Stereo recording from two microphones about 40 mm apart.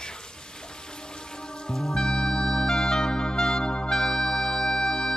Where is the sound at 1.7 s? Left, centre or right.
Centre.